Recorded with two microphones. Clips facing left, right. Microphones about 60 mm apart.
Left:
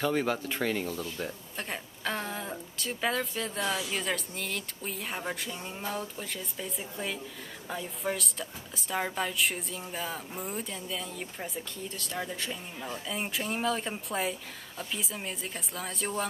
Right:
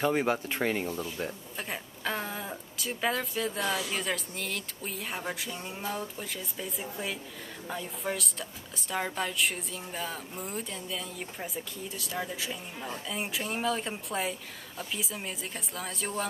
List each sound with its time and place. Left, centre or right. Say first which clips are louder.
0.0 s speech: right 1 dB; right
1.0 s speech: right 1 dB; centre